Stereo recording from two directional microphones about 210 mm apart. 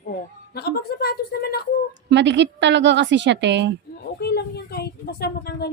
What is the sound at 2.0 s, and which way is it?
A woman's voice, 55° right (ahead or behind).